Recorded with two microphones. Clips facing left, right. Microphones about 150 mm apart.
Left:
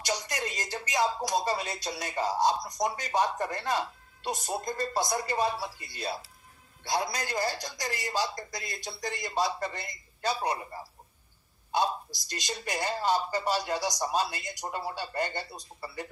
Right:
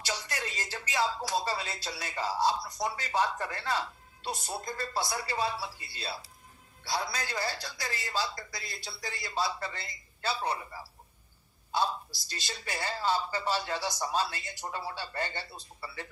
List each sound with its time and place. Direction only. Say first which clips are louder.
0.0 s a woman's voice: left 4 dB; 15° left (ahead or behind)
11.7 s a woman's voice: left 2 dB; 20° left (ahead or behind)